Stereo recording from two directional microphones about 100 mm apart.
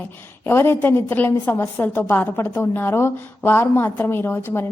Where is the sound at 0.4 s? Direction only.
25° left (ahead or behind).